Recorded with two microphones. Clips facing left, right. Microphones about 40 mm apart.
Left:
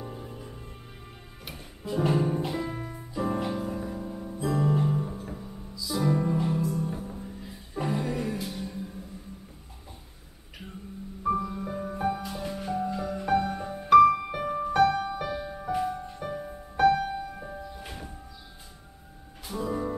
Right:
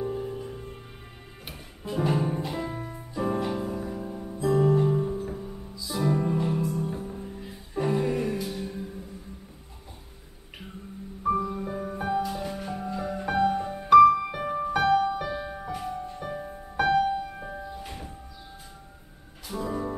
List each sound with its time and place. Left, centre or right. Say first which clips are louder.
0.0 s music: right 9 dB; centre
2.0 s music: left 1 dB; centre
11.2 s music: right 2 dB; centre
14.1 s music: right 3 dB; centre
14.4 s music: left 6 dB; centre
15.3 s music: right 1 dB; centre
15.7 s music: left 6 dB; centre
16.3 s music: left 2 dB; centre
17.4 s music: right 2 dB; right
17.8 s church bell: right 1 dB; centre
19.5 s music: even; centre